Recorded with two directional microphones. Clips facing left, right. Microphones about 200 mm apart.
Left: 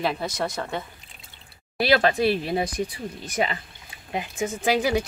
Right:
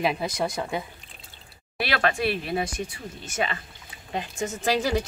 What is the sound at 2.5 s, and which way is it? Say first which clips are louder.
Speech: left 2 dB; 15° left (ahead or behind).